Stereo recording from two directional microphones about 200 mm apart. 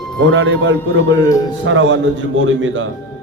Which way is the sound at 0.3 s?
75° right (ahead or behind).